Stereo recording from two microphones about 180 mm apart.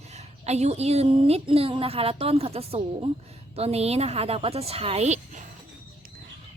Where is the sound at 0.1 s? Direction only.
35° right (ahead or behind).